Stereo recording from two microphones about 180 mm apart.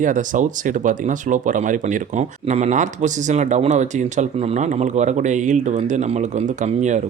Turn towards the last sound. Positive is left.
turn(degrees=-40)  # may be behind; listen again after turning